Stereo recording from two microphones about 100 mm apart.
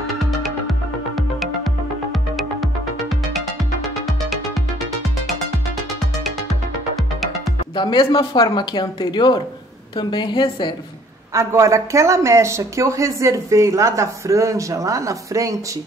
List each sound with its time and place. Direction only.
0.0 s music: centre (ahead or behind)
7.7 s speech: 55° left (ahead or behind)
11.3 s speech: 30° right (ahead or behind)